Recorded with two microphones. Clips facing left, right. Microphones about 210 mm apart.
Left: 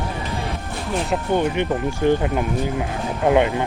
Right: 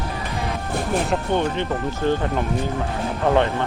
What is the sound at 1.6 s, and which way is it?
Speech, 15° left (ahead or behind).